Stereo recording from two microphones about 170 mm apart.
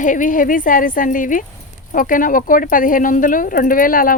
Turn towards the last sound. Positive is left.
turn(degrees=55)  # may be behind; listen again after turning